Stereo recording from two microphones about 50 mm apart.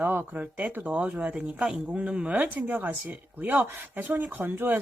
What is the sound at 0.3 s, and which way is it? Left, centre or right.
Speech, right.